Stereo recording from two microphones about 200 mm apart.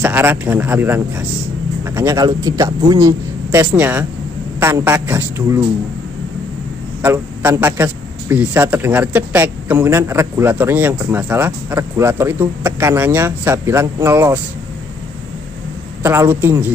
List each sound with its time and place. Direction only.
0.0 s a man's voice: 10° right (ahead or behind)
7.0 s a man's voice: 10° right (ahead or behind)
16.0 s a man's voice: 15° right (ahead or behind)